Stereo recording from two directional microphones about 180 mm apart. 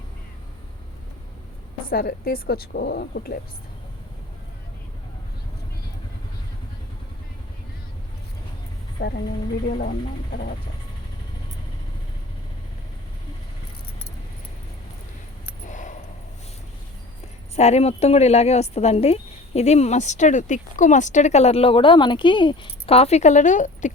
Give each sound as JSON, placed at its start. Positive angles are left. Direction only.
{"t": 1.9, "sound": "a woman's voice", "side_deg": 55}
{"t": 9.0, "sound": "speech", "side_deg": 70}
{"t": 9.6, "sound": "a woman's voice", "side_deg": 55}
{"t": 15.6, "sound": "a sound", "side_deg": 45}
{"t": 17.5, "sound": "speech", "side_deg": 35}